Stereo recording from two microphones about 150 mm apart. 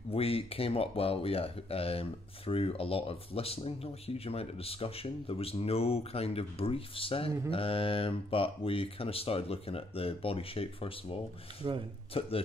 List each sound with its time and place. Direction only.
0.1 s speech: 40° left (ahead or behind)
11.6 s speech: 35° right (ahead or behind)
12.1 s speech: 40° left (ahead or behind)